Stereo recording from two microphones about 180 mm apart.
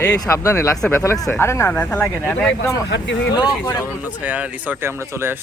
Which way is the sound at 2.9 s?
70° left (ahead or behind).